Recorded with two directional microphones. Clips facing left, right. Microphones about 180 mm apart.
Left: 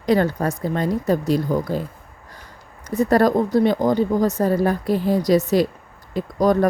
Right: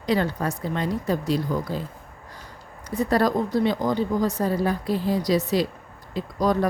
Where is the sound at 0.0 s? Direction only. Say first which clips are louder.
Left 5 dB; 50° left (ahead or behind).